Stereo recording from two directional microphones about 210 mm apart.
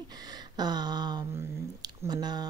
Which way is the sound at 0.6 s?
20° right (ahead or behind).